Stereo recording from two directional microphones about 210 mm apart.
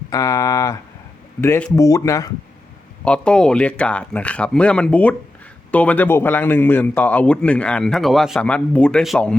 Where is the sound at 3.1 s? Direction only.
5° left (ahead or behind).